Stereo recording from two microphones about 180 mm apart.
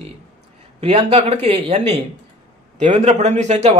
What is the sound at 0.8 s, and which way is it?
A man's voice, 35° right (ahead or behind).